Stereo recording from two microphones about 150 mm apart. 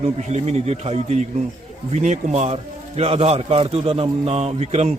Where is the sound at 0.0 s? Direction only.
50° right (ahead or behind).